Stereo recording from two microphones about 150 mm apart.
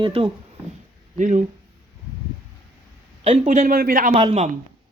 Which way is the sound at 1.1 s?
55° right (ahead or behind).